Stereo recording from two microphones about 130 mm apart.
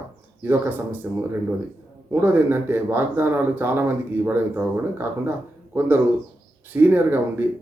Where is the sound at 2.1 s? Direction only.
15° right (ahead or behind).